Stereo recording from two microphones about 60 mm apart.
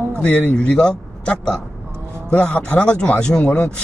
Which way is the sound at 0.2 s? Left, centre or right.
Left.